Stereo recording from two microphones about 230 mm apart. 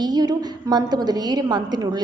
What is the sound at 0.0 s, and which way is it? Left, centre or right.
A woman's voice, centre.